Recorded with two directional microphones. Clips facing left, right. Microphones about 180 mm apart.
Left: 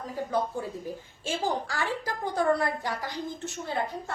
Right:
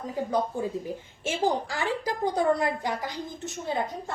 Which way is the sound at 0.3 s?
15° right (ahead or behind).